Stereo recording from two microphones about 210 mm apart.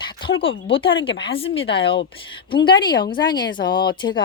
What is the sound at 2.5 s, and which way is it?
Speech, 20° left (ahead or behind).